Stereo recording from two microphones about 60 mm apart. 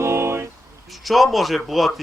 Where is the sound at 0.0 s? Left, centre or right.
Right.